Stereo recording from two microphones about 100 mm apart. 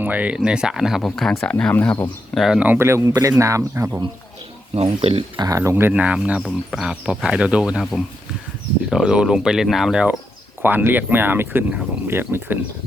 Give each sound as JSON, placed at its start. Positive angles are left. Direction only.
{"t": 0.0, "sound": "speech", "side_deg": -15}
{"t": 2.3, "sound": "speech", "side_deg": 0}
{"t": 2.6, "sound": "speech", "side_deg": -20}
{"t": 4.7, "sound": "speech", "side_deg": -85}
{"t": 5.4, "sound": "speech", "side_deg": -35}
{"t": 5.7, "sound": "speech", "side_deg": -15}
{"t": 6.4, "sound": "speech", "side_deg": 0}
{"t": 7.8, "sound": "speech", "side_deg": 0}
{"t": 10.6, "sound": "speech", "side_deg": -20}